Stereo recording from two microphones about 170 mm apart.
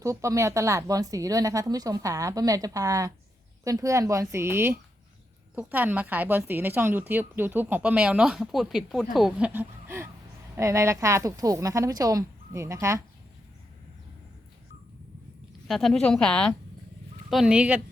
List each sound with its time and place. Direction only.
0.0 s speech: 20° right (ahead or behind)
15.6 s speech: centre (ahead or behind)